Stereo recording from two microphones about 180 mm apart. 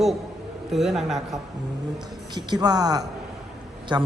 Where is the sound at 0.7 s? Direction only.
Centre (ahead or behind).